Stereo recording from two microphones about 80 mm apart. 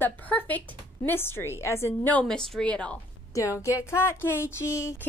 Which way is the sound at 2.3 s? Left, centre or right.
Centre.